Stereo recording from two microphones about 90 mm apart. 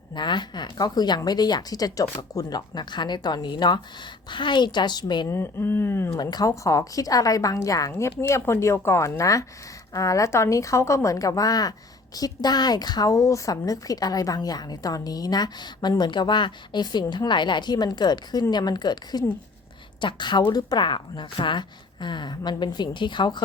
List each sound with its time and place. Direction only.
0.1 s a woman's voice: 55° left (ahead or behind); by 2.6 s 40° left (ahead or behind)
2.6 s a woman's voice: 55° left (ahead or behind)
5.3 s speech: 25° left (ahead or behind)
6.3 s a woman's voice: 40° left (ahead or behind); by 20.4 s 55° left (ahead or behind)
20.5 s a woman's voice: 45° left (ahead or behind)
20.8 s a woman's voice: 65° left (ahead or behind)